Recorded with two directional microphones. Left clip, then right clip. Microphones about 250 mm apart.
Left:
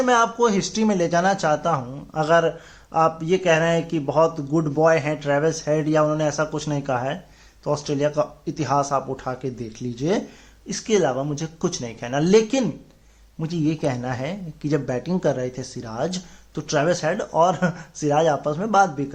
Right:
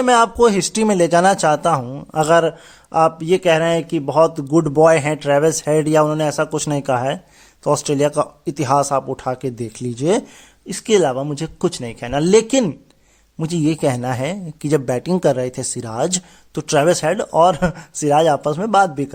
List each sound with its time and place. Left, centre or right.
0.0 s a man's voice: right